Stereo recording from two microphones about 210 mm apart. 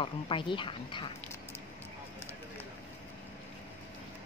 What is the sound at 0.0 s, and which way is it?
Speech, 25° left (ahead or behind).